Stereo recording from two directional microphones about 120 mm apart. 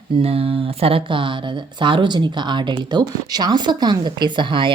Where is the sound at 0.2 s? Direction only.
55° right (ahead or behind).